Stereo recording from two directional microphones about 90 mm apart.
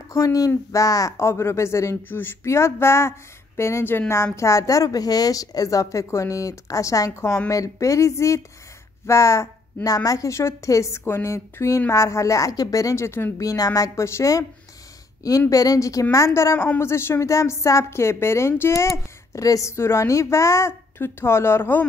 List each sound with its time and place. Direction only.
0.1 s a woman's voice: 40° left (ahead or behind)
13.5 s a woman's voice: 40° left (ahead or behind)
15.5 s a woman's voice: 40° left (ahead or behind); by 21.8 s 25° left (ahead or behind)